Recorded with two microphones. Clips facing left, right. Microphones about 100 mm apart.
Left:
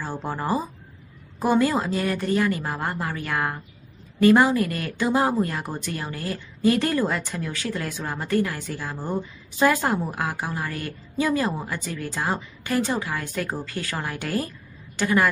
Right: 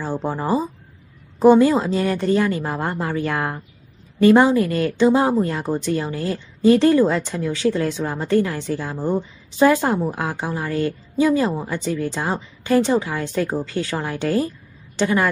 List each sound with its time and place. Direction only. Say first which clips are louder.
0.0 s speech: right 5 dB; 20° right (ahead or behind)